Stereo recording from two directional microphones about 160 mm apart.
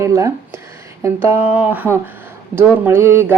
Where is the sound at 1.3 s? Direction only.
40° left (ahead or behind).